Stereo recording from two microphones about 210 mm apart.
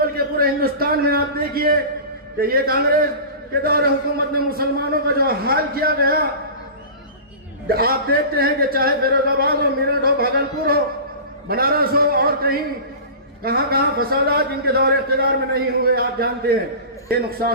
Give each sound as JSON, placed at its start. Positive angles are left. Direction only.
{"t": 0.0, "sound": "a man's voice", "side_deg": -45}
{"t": 7.7, "sound": "speech", "side_deg": -45}